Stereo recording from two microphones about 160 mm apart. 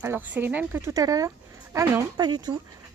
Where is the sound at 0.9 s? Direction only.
20° right (ahead or behind).